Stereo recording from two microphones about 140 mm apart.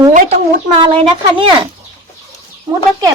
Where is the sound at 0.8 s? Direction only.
40° right (ahead or behind).